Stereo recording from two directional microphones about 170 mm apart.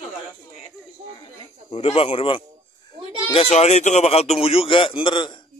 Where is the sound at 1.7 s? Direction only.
35° left (ahead or behind).